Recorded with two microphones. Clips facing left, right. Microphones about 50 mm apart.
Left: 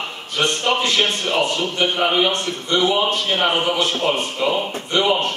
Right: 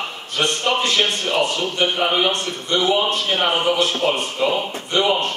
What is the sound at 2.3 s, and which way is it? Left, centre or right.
Speech, left.